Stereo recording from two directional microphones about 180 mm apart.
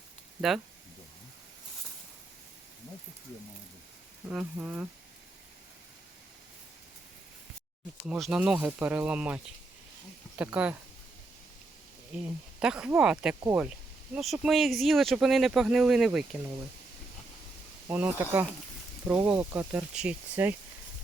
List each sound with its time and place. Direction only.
4.3 s speech: 5° right (ahead or behind)
8.0 s speech: 5° right (ahead or behind)
12.1 s speech: 5° right (ahead or behind)
14.2 s speech: centre (ahead or behind)
17.8 s speech: 10° right (ahead or behind)